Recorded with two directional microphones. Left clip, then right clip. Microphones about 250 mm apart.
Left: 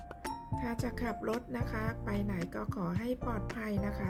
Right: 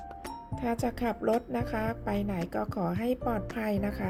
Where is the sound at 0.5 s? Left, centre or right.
Centre.